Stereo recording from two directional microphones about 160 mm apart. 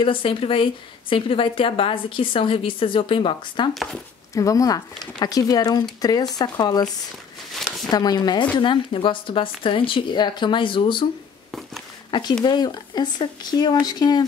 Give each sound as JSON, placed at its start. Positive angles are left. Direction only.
{"t": 0.0, "sound": "a woman's voice", "side_deg": 35}
{"t": 3.7, "sound": "speech", "side_deg": 0}
{"t": 4.4, "sound": "speech", "side_deg": 20}
{"t": 7.5, "sound": "a sound", "side_deg": 0}
{"t": 7.9, "sound": "a woman's voice", "side_deg": 25}
{"t": 12.1, "sound": "speech", "side_deg": 25}